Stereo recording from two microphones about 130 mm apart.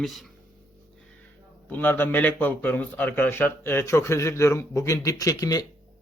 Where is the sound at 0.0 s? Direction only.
Centre (ahead or behind).